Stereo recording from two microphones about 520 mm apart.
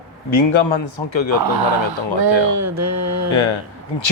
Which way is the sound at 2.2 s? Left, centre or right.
Right.